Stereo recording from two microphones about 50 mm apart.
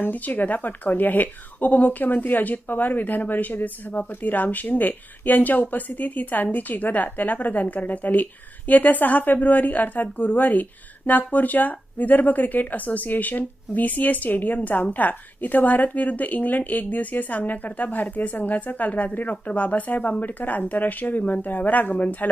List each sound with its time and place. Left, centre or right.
0.0 s speech: left